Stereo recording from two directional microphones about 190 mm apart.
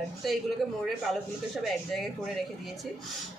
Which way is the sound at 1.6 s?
Centre (ahead or behind).